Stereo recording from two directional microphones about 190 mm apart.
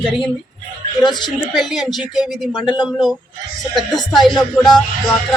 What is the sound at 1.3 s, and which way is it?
Speech, centre (ahead or behind).